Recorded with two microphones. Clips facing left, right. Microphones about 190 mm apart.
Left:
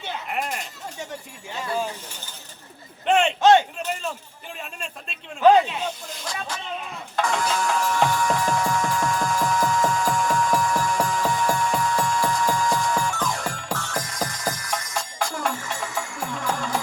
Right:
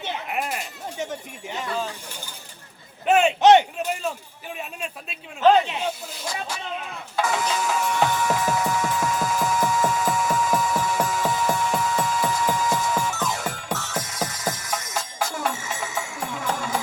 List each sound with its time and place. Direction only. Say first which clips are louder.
0.3 s a sound: left 1 dB; 5° right (ahead or behind)
3.1 s speech: right 1 dB; 5° right (ahead or behind)
3.4 s speech: right 2 dB; 20° right (ahead or behind)
5.6 s speech: right 1 dB; 20° right (ahead or behind)
7.2 s music: even; 5° right (ahead or behind)